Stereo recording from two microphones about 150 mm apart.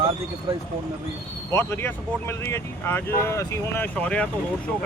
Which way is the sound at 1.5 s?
15° left (ahead or behind).